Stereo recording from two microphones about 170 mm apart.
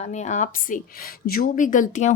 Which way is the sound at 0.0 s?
40° left (ahead or behind).